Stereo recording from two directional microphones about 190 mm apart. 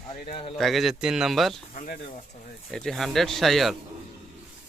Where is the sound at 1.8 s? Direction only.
45° left (ahead or behind).